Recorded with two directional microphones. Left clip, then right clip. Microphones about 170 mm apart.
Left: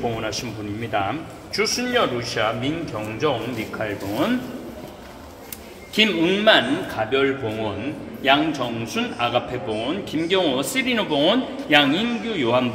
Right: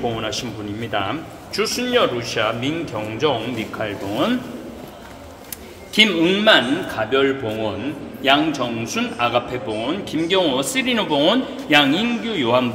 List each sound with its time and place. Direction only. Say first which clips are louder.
0.0 s a man's voice: right 2 dB; 15° right (ahead or behind)
5.9 s a man's voice: right 3 dB; 20° right (ahead or behind)